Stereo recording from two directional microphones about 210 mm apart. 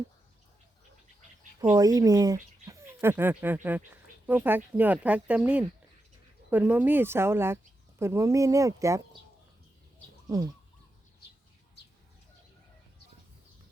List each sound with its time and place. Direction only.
1.7 s speech: 15° right (ahead or behind)
10.2 s chicken: 15° right (ahead or behind)